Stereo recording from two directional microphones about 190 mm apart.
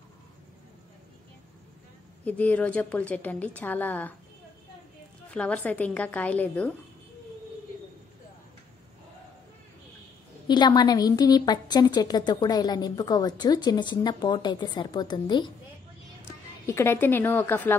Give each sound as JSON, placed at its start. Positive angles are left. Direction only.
{"t": 2.2, "sound": "a woman's voice", "side_deg": 10}
{"t": 5.3, "sound": "a woman's voice", "side_deg": 5}
{"t": 10.5, "sound": "a woman's voice", "side_deg": 20}